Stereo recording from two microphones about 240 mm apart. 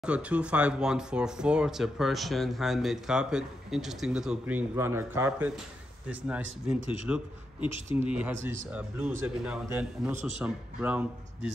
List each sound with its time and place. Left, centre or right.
0.0 s speech: centre